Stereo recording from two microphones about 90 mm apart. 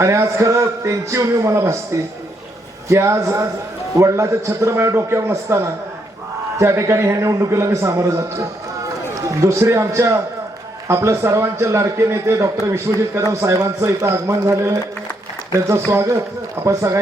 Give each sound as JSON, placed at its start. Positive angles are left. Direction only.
{"t": 0.0, "sound": "a man's voice", "side_deg": -35}
{"t": 2.9, "sound": "a man's voice", "side_deg": -30}